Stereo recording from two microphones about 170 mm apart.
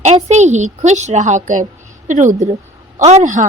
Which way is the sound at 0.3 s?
45° right (ahead or behind).